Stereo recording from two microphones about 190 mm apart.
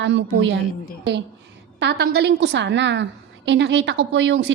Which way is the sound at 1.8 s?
60° right (ahead or behind).